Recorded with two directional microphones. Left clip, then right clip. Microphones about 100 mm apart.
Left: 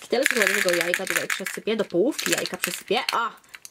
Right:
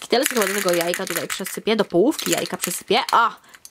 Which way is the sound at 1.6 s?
30° right (ahead or behind).